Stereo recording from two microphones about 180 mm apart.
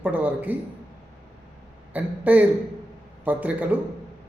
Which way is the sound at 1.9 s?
10° right (ahead or behind).